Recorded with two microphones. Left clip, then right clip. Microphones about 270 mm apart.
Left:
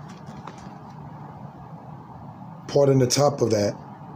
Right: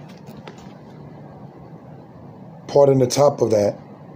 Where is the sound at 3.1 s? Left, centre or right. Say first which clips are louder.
Right 5 dB; left.